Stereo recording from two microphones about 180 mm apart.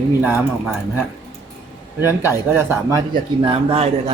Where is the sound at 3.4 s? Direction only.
30° right (ahead or behind).